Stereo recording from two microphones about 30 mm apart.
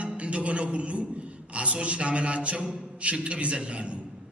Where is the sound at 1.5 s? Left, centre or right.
Right.